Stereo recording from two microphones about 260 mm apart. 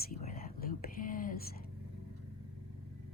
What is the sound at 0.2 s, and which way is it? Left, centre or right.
Whispering, left.